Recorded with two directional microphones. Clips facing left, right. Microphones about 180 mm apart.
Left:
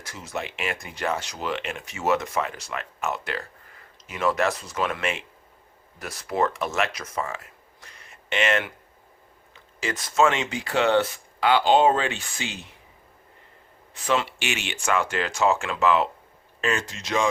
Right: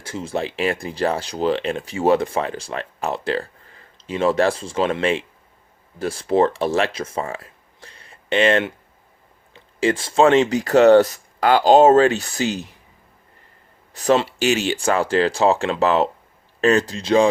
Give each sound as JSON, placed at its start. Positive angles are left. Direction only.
{"t": 0.0, "sound": "speech", "side_deg": -30}
{"t": 9.8, "sound": "speech", "side_deg": -30}
{"t": 13.9, "sound": "speech", "side_deg": -40}